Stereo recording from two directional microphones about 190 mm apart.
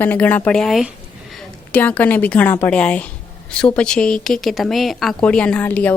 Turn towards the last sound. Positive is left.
turn(degrees=10)  # may be behind; listen again after turning